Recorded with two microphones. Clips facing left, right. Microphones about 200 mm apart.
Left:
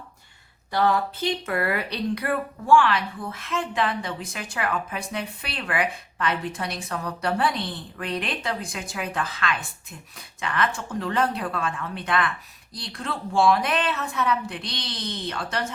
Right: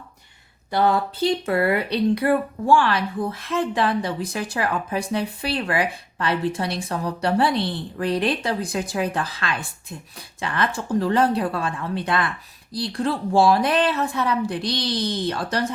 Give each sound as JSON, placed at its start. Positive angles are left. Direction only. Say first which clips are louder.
{"t": 0.7, "sound": "speech", "louder": "right 2 dB", "side_deg": -25}